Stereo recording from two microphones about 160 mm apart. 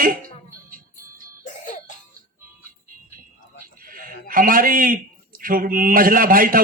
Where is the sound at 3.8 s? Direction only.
60° right (ahead or behind).